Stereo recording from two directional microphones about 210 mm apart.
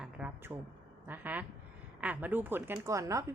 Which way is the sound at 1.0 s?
10° right (ahead or behind).